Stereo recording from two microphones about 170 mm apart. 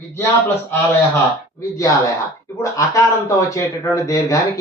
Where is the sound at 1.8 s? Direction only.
20° left (ahead or behind).